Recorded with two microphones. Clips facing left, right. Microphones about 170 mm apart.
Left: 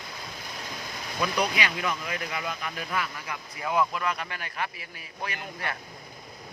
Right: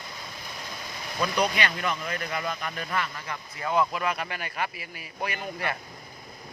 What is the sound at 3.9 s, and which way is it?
Speech, 10° right (ahead or behind).